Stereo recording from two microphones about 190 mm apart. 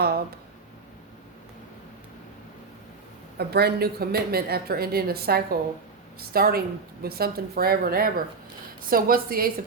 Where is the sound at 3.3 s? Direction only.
55° right (ahead or behind).